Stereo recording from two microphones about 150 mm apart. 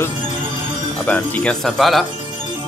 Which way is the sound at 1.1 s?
10° left (ahead or behind).